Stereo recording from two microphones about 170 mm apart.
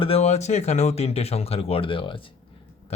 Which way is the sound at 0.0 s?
35° left (ahead or behind).